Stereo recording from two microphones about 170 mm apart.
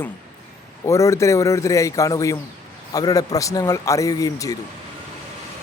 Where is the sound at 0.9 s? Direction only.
15° left (ahead or behind).